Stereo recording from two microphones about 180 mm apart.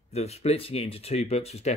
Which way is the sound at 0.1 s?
35° left (ahead or behind).